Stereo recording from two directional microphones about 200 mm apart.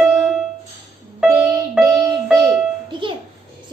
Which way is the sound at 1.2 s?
10° right (ahead or behind).